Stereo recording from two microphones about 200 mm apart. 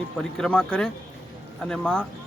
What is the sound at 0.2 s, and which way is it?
Speech, 5° left (ahead or behind).